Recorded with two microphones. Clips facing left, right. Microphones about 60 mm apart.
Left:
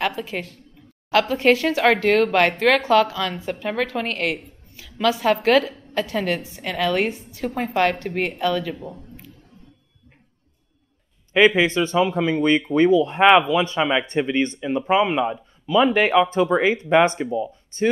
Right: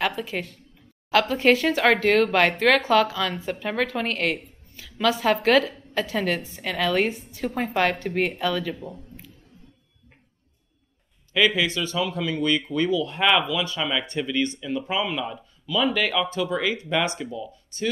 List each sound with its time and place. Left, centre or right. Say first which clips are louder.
0.0 s a woman's voice: left 1 dB; centre
11.3 s speech: left 6 dB; left